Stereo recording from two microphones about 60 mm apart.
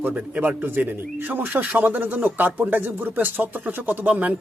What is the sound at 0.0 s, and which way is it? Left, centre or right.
A man's voice, right.